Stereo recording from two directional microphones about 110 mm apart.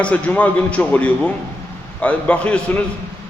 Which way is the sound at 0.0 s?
15° left (ahead or behind).